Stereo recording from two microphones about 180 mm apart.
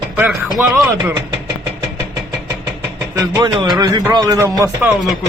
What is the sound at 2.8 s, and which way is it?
A man's voice, 20° right (ahead or behind).